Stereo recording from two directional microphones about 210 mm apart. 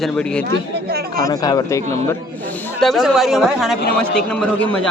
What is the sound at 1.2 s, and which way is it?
Speech, 15° left (ahead or behind).